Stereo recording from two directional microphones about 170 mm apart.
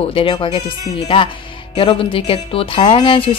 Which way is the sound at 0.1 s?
30° left (ahead or behind).